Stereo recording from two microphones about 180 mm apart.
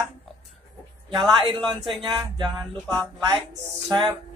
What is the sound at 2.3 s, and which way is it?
Speech, 25° right (ahead or behind).